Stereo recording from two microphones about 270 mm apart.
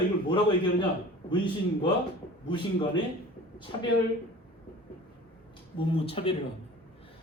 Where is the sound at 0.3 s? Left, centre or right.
Centre.